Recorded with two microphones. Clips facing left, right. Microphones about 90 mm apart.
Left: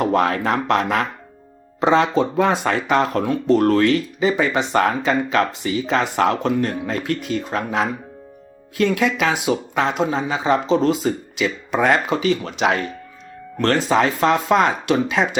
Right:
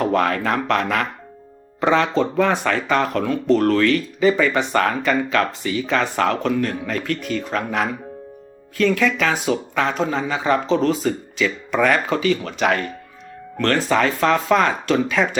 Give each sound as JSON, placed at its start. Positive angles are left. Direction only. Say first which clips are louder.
{"t": 0.0, "sound": "speech", "louder": "left 1 dB", "side_deg": 15}